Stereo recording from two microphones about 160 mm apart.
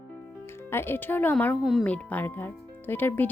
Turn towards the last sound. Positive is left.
turn(degrees=10)  # may be behind; listen again after turning